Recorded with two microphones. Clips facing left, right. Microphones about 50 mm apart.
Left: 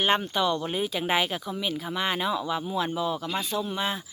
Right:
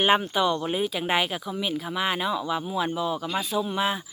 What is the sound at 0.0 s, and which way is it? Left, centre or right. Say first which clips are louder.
Speech: right 3 dB; centre.